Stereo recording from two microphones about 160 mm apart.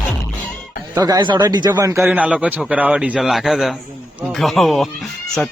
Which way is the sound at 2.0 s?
5° right (ahead or behind).